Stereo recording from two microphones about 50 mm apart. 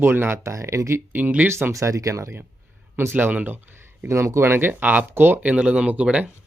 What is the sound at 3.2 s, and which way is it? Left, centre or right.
Speech, right.